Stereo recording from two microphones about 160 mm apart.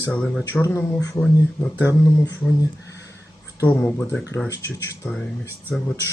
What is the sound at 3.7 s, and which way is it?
Speech, 10° left (ahead or behind).